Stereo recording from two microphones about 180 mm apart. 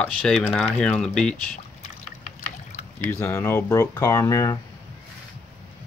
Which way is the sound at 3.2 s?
15° left (ahead or behind).